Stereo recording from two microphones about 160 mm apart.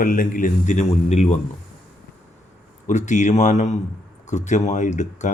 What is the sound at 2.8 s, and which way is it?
Speech, 50° left (ahead or behind).